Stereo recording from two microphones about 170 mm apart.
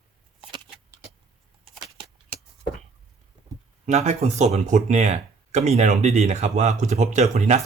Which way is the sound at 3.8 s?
40° right (ahead or behind).